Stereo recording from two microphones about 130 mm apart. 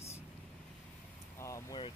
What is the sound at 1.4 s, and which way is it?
Speech, 25° left (ahead or behind).